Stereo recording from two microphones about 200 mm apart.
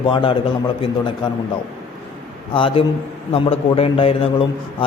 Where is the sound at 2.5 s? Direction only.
25° left (ahead or behind).